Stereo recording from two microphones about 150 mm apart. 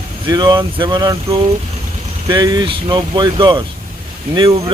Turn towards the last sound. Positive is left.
turn(degrees=-30)  # may be behind; listen again after turning